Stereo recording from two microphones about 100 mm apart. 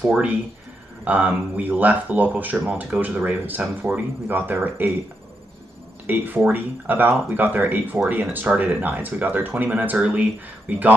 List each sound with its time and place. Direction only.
0.0 s speech: 10° right (ahead or behind)
6.0 s speech: 20° right (ahead or behind)